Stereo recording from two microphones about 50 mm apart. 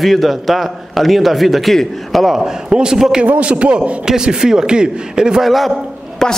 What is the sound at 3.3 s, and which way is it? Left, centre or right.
A man's voice, right.